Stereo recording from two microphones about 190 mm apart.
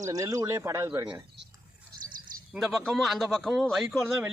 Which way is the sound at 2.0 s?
45° right (ahead or behind).